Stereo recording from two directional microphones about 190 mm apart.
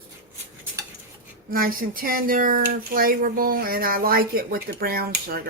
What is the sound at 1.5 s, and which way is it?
Speech, 50° right (ahead or behind).